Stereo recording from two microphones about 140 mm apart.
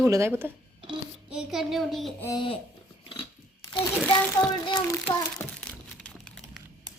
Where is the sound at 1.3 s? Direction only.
5° right (ahead or behind).